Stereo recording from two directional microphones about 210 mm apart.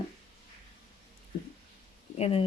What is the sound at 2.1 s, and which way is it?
Speech, 30° left (ahead or behind).